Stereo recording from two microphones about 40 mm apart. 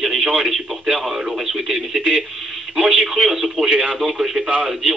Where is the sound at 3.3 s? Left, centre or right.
Centre.